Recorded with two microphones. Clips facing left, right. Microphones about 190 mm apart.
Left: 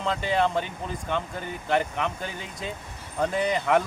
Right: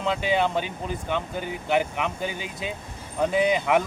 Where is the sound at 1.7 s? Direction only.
5° right (ahead or behind).